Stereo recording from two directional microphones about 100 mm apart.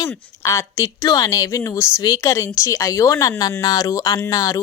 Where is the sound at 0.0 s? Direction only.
30° left (ahead or behind).